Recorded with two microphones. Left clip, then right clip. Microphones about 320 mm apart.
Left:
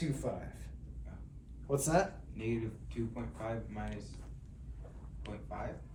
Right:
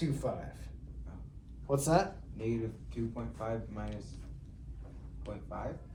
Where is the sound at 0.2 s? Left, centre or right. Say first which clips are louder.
Right 3 dB; centre.